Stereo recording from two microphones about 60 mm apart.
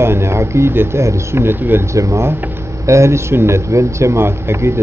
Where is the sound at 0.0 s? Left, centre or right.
Right.